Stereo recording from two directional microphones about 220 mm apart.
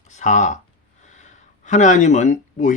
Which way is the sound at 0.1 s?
35° left (ahead or behind).